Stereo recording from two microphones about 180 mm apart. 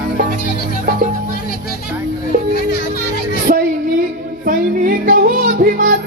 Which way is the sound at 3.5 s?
45° right (ahead or behind).